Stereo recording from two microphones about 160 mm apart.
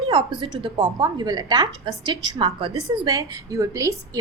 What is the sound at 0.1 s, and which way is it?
A woman's voice, 30° right (ahead or behind).